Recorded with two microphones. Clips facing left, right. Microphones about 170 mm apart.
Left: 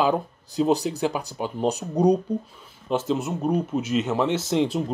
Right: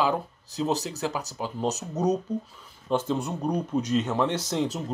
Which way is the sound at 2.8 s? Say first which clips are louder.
Left 2 dB; 10° left (ahead or behind).